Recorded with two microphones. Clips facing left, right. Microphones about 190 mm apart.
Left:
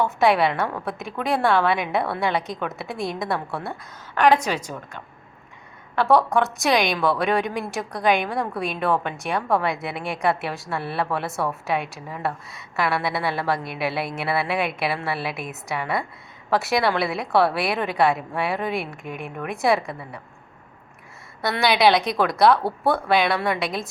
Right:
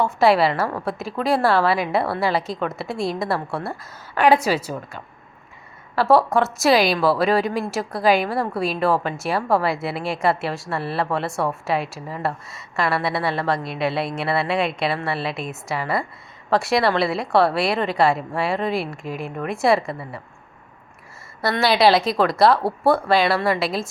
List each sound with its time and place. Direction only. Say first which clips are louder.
0.0 s a woman's voice: right 2 dB; centre (ahead or behind)
6.0 s a woman's voice: right 2 dB; centre (ahead or behind)
21.6 s a woman's voice: right 2 dB; centre (ahead or behind)